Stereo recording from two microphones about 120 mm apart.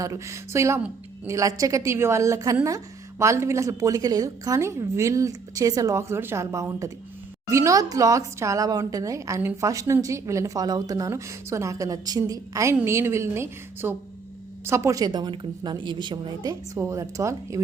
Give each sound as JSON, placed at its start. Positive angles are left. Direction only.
{"t": 0.0, "sound": "a woman's voice", "side_deg": -25}
{"t": 16.7, "sound": "a woman's voice", "side_deg": -25}